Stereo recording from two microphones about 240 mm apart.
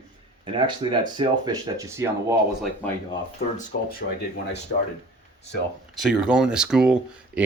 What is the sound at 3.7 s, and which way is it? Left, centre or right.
Speech, left.